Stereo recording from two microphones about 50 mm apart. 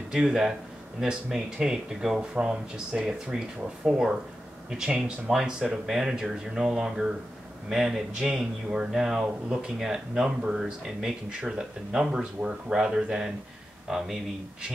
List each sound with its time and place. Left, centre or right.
0.1 s a man's voice: centre